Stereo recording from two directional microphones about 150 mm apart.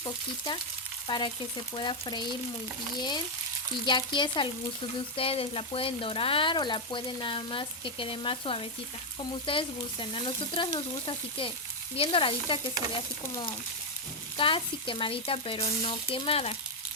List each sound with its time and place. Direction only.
0.0 s frying: 30° left (ahead or behind)
3.8 s frying: 30° left (ahead or behind)
14.3 s frying: 35° left (ahead or behind)